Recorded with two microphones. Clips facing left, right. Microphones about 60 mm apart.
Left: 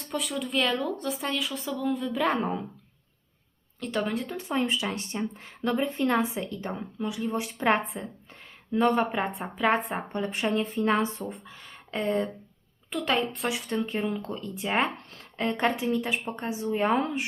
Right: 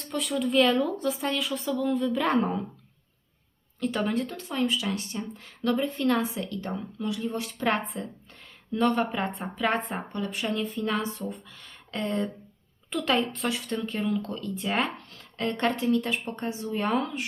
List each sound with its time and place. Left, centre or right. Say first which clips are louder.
0.1 s speech: right 4 dB; centre
3.8 s speech: right 2 dB; centre
4.4 s a woman's voice: left 1 dB; left
10.1 s a woman's voice: left 4 dB; left
11.3 s speech: right 1 dB; centre